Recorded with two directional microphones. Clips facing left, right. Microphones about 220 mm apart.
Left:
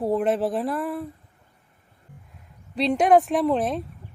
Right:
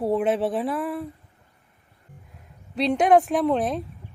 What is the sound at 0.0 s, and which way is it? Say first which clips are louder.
Speech: even; centre (ahead or behind).